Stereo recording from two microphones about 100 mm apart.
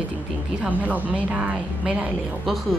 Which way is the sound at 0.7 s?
15° right (ahead or behind).